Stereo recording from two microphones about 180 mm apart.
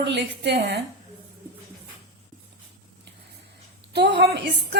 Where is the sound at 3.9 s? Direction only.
70° right (ahead or behind).